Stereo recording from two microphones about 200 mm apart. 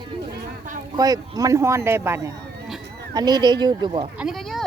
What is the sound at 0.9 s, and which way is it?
Speech, 20° right (ahead or behind).